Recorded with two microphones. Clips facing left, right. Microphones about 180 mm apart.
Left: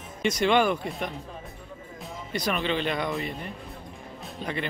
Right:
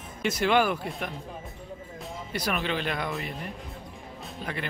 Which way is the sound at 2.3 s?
5° right (ahead or behind).